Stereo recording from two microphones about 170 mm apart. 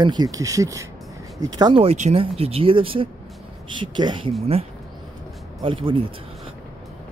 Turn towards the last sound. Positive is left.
turn(degrees=-30)  # may be behind; listen again after turning